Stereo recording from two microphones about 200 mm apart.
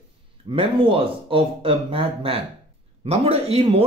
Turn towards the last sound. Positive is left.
turn(degrees=-30)  # may be behind; listen again after turning